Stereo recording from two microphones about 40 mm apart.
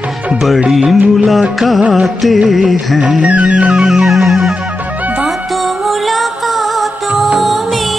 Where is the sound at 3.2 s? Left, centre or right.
Right.